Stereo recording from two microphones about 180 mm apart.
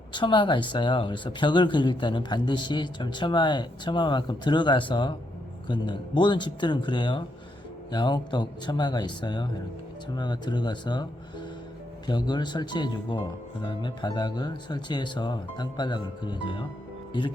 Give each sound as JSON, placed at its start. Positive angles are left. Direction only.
{"t": 0.1, "sound": "speech", "side_deg": 25}
{"t": 12.0, "sound": "speech", "side_deg": 25}